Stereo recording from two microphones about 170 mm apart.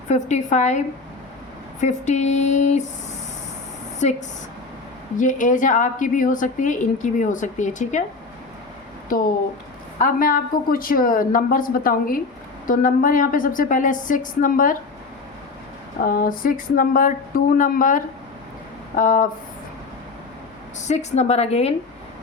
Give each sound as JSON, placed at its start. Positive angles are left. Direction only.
{"t": 0.1, "sound": "a woman's voice", "side_deg": 45}
{"t": 1.8, "sound": "a woman's voice", "side_deg": 45}
{"t": 4.0, "sound": "a woman's voice", "side_deg": 40}
{"t": 5.2, "sound": "a woman's voice", "side_deg": 50}
{"t": 9.1, "sound": "a woman's voice", "side_deg": 55}
{"t": 16.0, "sound": "a woman's voice", "side_deg": 55}
{"t": 20.8, "sound": "a woman's voice", "side_deg": 40}